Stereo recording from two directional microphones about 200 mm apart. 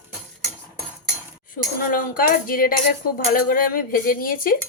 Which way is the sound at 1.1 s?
45° left (ahead or behind).